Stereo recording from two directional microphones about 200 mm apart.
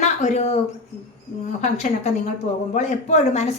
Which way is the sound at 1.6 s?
35° left (ahead or behind).